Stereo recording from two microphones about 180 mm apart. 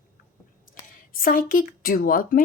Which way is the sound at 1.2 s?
50° left (ahead or behind).